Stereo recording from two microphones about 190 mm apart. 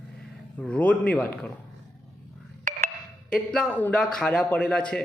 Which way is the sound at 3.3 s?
5° left (ahead or behind).